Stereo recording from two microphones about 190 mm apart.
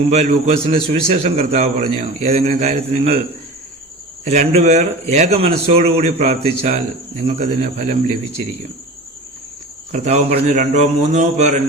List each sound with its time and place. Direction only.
0.1 s speech: 35° right (ahead or behind)
4.2 s speech: 40° right (ahead or behind)
9.9 s speech: 35° right (ahead or behind)